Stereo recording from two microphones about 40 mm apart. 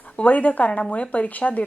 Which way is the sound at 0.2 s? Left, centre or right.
Left.